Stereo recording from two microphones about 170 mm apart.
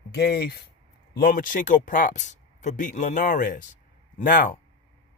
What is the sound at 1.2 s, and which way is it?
Speech, 55° left (ahead or behind).